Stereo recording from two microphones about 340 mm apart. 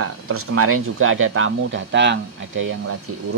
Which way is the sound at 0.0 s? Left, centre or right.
Right.